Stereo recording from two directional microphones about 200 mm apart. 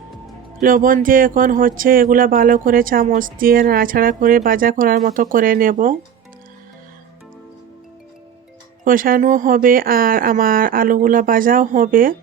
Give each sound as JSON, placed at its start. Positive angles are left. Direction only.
{"t": 0.6, "sound": "speech", "side_deg": -45}
{"t": 8.8, "sound": "speech", "side_deg": -45}